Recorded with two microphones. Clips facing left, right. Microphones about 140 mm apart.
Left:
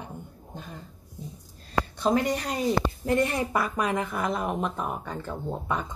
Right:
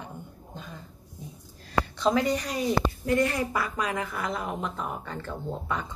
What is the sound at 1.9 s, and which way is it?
Speech, 50° left (ahead or behind).